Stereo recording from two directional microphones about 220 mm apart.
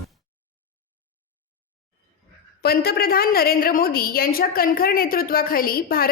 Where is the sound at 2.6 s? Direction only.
45° left (ahead or behind).